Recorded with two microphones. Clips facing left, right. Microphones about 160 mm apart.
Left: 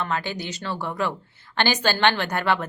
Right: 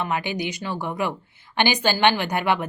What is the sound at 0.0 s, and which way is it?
Speech, 15° right (ahead or behind).